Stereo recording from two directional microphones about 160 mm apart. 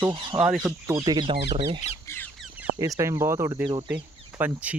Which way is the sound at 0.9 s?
25° right (ahead or behind).